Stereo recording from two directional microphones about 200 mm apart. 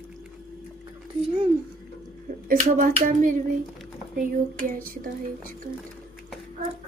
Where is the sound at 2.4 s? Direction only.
45° right (ahead or behind).